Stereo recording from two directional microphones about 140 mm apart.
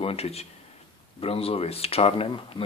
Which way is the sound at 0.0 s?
45° left (ahead or behind).